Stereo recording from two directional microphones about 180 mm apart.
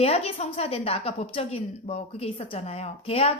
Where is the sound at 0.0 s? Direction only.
35° left (ahead or behind).